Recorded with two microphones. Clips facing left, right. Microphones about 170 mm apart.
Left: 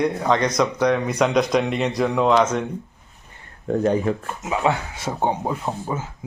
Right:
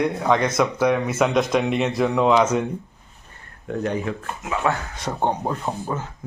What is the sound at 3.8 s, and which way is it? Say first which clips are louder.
Speech: left 5 dB; 35° left (ahead or behind).